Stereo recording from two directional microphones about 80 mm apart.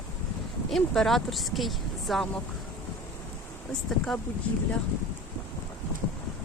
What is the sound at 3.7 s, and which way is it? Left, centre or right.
Speech, centre.